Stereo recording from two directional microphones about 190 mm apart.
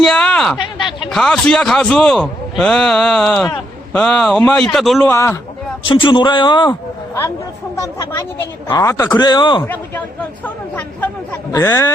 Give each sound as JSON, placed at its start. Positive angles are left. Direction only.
{"t": 0.0, "sound": "a sound", "side_deg": 5}
{"t": 0.6, "sound": "a sound", "side_deg": 25}
{"t": 1.1, "sound": "a man's voice", "side_deg": 0}
{"t": 5.0, "sound": "speech", "side_deg": 15}
{"t": 5.8, "sound": "a man's voice", "side_deg": 25}
{"t": 7.8, "sound": "a man's voice", "side_deg": 15}
{"t": 9.6, "sound": "speech", "side_deg": 10}